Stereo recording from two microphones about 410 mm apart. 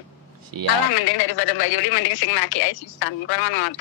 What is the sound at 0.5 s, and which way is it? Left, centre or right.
Speech, right.